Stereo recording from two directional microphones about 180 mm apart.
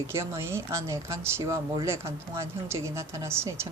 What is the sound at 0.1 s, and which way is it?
Speech, 15° right (ahead or behind).